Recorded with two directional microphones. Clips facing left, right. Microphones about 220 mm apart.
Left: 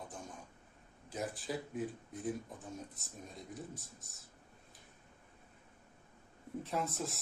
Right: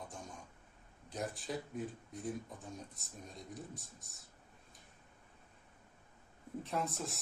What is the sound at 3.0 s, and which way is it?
Speech, centre (ahead or behind).